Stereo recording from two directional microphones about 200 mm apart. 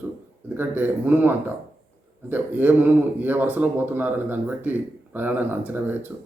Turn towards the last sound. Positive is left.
turn(degrees=-10)  # may be behind; listen again after turning